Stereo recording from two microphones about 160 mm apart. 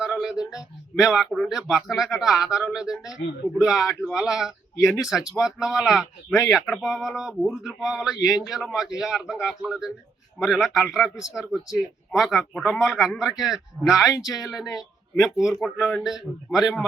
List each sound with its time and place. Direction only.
0.2 s a sound: 5° right (ahead or behind)
0.9 s a man's voice: centre (ahead or behind)
14.3 s speech: 20° left (ahead or behind)
15.2 s a man's voice: centre (ahead or behind)